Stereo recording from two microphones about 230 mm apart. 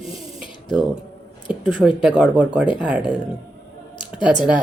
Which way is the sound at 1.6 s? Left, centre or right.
Centre.